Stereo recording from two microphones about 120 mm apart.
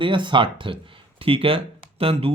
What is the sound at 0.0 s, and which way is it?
Speech, 40° right (ahead or behind).